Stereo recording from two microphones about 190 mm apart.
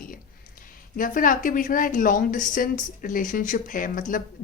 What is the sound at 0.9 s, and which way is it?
A woman's voice, 45° left (ahead or behind).